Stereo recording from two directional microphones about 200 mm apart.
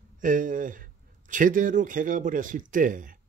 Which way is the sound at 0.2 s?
40° right (ahead or behind).